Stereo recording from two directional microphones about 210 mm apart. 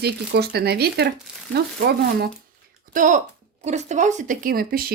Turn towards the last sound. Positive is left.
turn(degrees=-45)  # may be behind; listen again after turning